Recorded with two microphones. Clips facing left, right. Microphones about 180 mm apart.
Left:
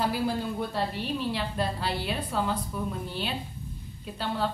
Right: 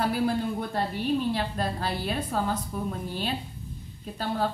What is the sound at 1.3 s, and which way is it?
A woman's voice, 45° right (ahead or behind).